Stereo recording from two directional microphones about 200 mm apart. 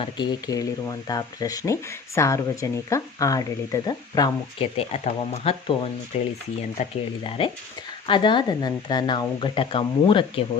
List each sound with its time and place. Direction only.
0.0 s speech: 20° left (ahead or behind)
4.9 s speech: 30° left (ahead or behind)
6.1 s stir: 30° left (ahead or behind)
7.3 s speech: 25° left (ahead or behind)